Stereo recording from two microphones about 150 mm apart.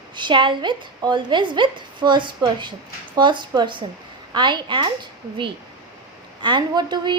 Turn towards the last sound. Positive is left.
turn(degrees=-30)  # may be behind; listen again after turning